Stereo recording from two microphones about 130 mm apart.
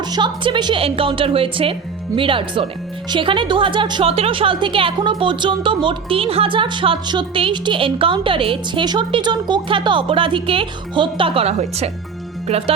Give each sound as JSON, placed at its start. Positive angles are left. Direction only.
{"t": 0.0, "sound": "speech", "side_deg": -35}